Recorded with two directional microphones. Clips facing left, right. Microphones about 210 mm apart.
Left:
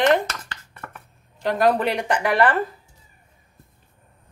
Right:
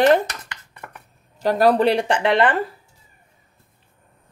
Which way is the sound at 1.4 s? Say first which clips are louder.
Right 3 dB; 35° right (ahead or behind).